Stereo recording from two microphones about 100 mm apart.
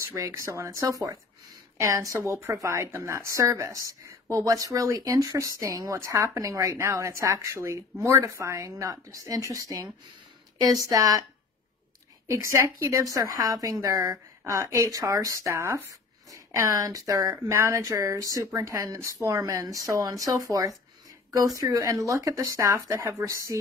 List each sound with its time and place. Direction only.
0.1 s a woman's voice: 30° right (ahead or behind)
12.3 s a woman's voice: 30° right (ahead or behind)
17.3 s a woman's voice: 25° right (ahead or behind)